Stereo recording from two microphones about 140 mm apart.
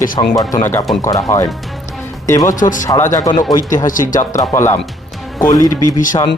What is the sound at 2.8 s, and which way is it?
Speech, 25° left (ahead or behind).